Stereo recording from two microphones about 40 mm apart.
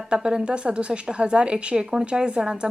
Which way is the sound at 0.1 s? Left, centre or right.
Right.